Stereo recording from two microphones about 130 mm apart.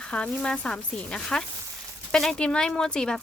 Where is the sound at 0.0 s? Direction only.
5° left (ahead or behind).